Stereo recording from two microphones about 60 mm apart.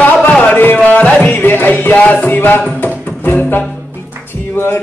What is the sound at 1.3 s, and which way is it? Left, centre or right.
Music, left.